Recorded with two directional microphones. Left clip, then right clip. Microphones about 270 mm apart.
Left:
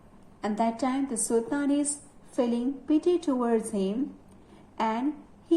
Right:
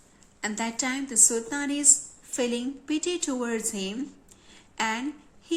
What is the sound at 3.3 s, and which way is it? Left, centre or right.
Speech, right.